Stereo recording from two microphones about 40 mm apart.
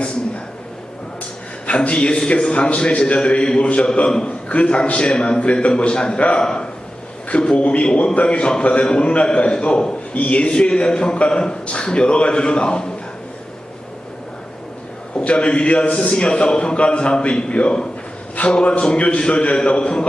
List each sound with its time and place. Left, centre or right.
1.6 s a man's voice: left
6.4 s speech: centre
7.5 s a man's voice: left
10.2 s a man's voice: left
15.1 s a man's voice: left